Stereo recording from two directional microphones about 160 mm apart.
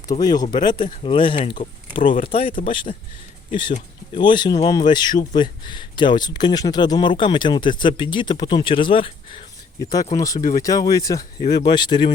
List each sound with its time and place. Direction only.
0.1 s speech: 25° left (ahead or behind)
1.5 s speech: 55° left (ahead or behind)
2.2 s speech: 35° left (ahead or behind)
3.5 s speech: 30° left (ahead or behind)
9.7 s speech: 20° left (ahead or behind)